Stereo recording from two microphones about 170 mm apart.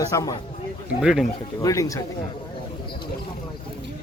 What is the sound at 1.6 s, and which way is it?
Speech, 20° left (ahead or behind).